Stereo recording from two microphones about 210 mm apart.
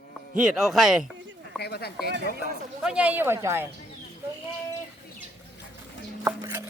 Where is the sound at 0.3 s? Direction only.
Centre (ahead or behind).